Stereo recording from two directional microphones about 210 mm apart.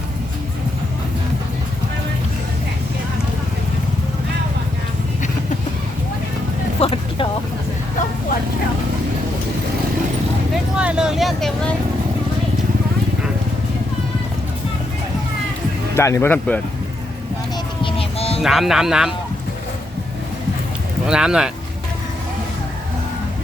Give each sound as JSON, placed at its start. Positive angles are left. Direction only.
{"t": 6.7, "sound": "vehicle", "side_deg": 25}
{"t": 10.8, "sound": "vehicle", "side_deg": -5}
{"t": 16.0, "sound": "speech", "side_deg": 15}
{"t": 17.8, "sound": "music", "side_deg": 25}
{"t": 18.4, "sound": "speech", "side_deg": 0}
{"t": 21.1, "sound": "speech", "side_deg": -5}